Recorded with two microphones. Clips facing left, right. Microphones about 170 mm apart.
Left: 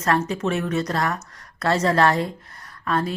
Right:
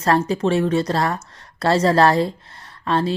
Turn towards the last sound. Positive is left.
turn(degrees=-30)  # may be behind; listen again after turning